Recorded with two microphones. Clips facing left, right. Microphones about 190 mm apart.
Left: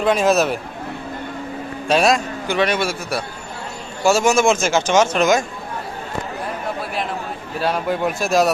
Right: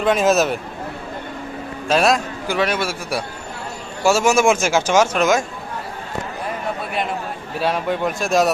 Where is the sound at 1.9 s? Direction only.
Centre (ahead or behind).